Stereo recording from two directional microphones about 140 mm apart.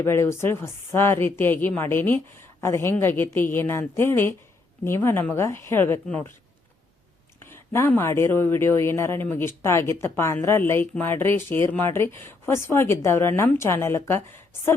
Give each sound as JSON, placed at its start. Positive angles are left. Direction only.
{"t": 0.0, "sound": "a man's voice", "side_deg": 20}
{"t": 7.5, "sound": "a man's voice", "side_deg": 15}